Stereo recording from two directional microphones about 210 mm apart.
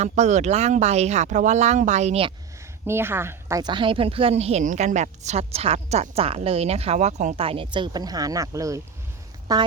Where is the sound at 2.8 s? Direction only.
10° right (ahead or behind).